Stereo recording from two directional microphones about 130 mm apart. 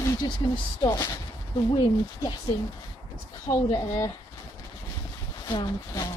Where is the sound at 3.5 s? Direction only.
40° left (ahead or behind).